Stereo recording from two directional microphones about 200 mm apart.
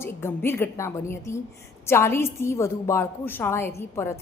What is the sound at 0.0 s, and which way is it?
A woman's voice, 10° left (ahead or behind).